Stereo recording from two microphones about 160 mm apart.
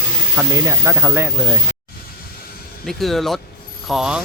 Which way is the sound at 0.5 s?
15° right (ahead or behind).